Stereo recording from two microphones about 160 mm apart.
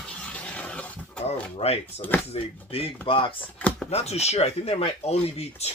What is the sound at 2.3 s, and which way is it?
Speech, 35° left (ahead or behind).